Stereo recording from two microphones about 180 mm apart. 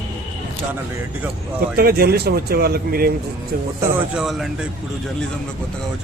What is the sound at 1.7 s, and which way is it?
Speech, 60° right (ahead or behind).